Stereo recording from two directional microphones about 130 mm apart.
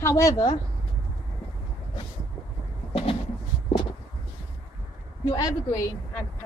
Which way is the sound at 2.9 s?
45° left (ahead or behind).